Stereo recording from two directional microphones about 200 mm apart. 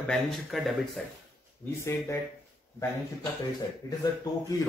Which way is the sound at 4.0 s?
15° left (ahead or behind).